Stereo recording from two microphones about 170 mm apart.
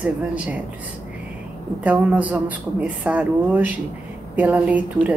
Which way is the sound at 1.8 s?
10° right (ahead or behind).